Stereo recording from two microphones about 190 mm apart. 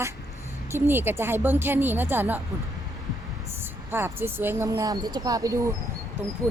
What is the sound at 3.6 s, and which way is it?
Speech, 10° right (ahead or behind).